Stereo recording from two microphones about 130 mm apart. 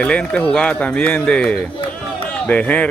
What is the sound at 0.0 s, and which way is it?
A man's voice, 10° left (ahead or behind).